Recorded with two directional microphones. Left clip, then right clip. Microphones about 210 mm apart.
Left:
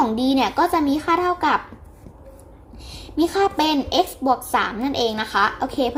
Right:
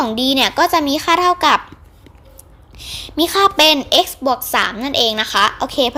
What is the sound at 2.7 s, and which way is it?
A woman's voice, 25° right (ahead or behind).